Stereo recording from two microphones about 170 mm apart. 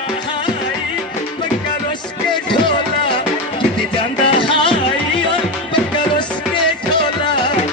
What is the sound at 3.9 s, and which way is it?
Music, 30° left (ahead or behind).